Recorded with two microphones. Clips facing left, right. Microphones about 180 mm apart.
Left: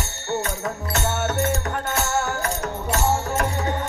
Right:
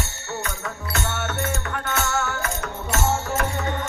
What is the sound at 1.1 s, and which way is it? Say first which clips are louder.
Music: left 4 dB; 45° left (ahead or behind).